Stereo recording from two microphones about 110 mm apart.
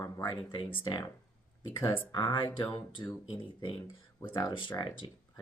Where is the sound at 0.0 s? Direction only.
40° left (ahead or behind).